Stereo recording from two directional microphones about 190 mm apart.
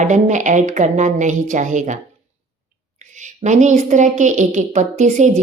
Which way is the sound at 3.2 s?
40° right (ahead or behind).